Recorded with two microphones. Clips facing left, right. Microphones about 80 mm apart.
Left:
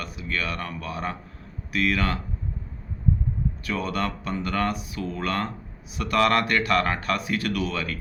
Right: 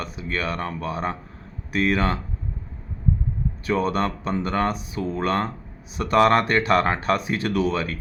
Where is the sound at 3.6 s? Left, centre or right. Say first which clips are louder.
Right 6 dB; right.